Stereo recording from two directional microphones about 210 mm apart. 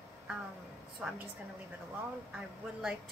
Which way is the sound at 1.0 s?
5° right (ahead or behind).